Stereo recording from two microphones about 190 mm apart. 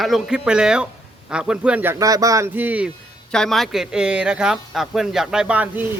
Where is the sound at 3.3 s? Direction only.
5° left (ahead or behind).